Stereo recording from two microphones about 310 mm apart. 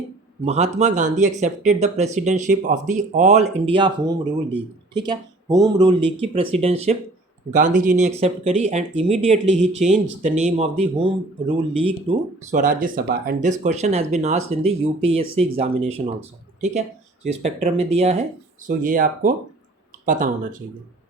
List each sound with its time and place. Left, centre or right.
0.4 s speech: right